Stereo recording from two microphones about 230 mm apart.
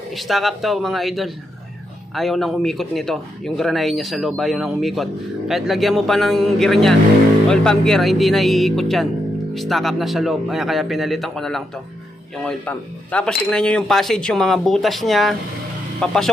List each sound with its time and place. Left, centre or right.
0.2 s speech: centre